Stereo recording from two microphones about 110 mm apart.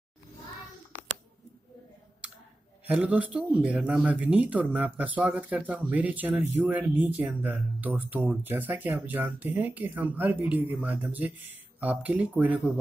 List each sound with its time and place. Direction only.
2.9 s speech: 10° right (ahead or behind)